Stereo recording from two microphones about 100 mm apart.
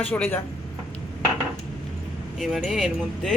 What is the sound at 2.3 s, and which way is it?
Speech, centre (ahead or behind).